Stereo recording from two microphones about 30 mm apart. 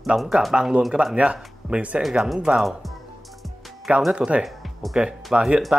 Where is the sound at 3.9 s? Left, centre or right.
Right.